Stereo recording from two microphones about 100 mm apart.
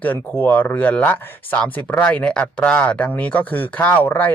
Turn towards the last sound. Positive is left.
turn(degrees=20)  # may be behind; listen again after turning